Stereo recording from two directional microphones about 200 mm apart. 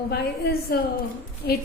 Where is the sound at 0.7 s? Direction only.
50° left (ahead or behind).